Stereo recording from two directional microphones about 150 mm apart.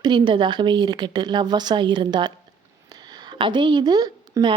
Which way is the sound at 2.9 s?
25° right (ahead or behind).